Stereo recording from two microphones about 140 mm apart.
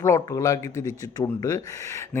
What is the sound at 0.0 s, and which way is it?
A man's voice, 20° left (ahead or behind).